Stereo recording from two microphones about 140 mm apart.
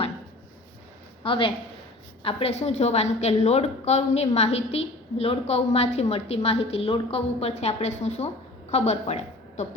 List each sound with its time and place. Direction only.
1.2 s a woman's voice: 40° left (ahead or behind)